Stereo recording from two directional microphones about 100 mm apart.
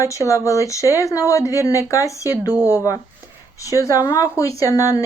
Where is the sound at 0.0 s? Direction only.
30° left (ahead or behind).